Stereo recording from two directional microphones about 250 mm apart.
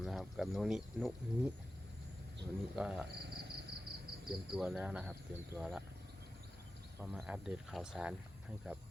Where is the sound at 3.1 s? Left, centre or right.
Right.